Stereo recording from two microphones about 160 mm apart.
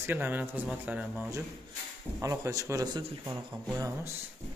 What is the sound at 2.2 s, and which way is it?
Speech, 20° right (ahead or behind).